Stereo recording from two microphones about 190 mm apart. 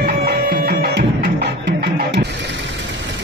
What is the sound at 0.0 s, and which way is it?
Music, 55° right (ahead or behind).